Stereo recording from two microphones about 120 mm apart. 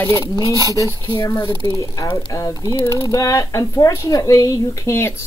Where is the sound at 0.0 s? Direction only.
25° left (ahead or behind).